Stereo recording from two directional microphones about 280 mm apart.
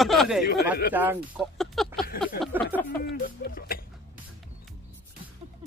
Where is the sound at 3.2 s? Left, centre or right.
Left.